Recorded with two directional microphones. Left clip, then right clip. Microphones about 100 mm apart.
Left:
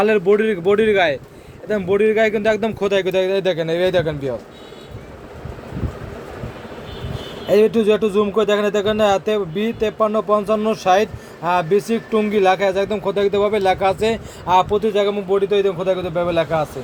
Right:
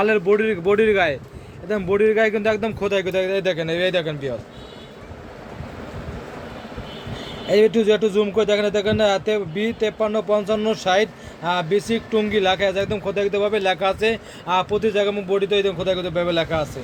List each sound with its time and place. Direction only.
0.0 s speech: 40° left (ahead or behind)
2.6 s speech: 55° left (ahead or behind)
3.4 s speech: 45° left (ahead or behind)
7.4 s speech: 30° left (ahead or behind)
14.7 s a man's voice: 15° left (ahead or behind)